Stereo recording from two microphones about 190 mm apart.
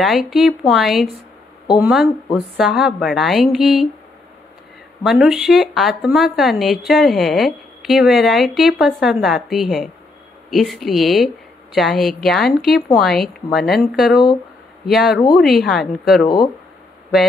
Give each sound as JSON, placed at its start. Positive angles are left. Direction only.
{"t": 0.0, "sound": "a woman's voice", "side_deg": 0}
{"t": 5.0, "sound": "a woman's voice", "side_deg": 0}